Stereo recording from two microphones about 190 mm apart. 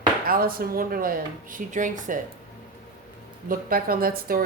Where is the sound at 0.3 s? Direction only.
50° right (ahead or behind).